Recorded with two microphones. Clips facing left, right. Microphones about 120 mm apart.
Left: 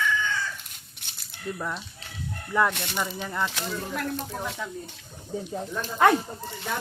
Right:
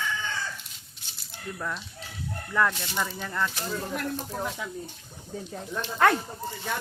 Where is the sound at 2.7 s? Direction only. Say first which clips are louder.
Left 3 dB; 65° left (ahead or behind).